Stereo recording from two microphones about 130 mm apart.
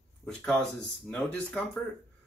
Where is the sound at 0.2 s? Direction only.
5° left (ahead or behind).